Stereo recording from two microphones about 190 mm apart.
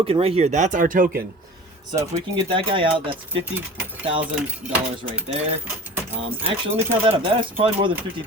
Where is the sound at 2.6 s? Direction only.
25° right (ahead or behind).